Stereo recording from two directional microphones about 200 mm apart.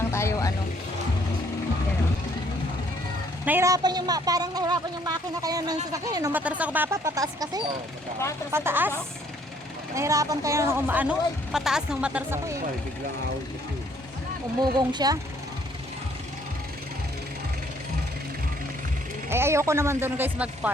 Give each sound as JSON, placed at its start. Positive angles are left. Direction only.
{"t": 0.1, "sound": "vehicle", "side_deg": 15}
{"t": 3.4, "sound": "a woman's voice", "side_deg": -10}
{"t": 9.9, "sound": "speech", "side_deg": -15}
{"t": 14.6, "sound": "a woman's voice", "side_deg": -20}
{"t": 19.3, "sound": "speech", "side_deg": -10}